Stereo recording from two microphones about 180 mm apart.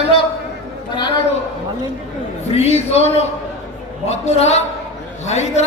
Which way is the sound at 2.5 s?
35° left (ahead or behind).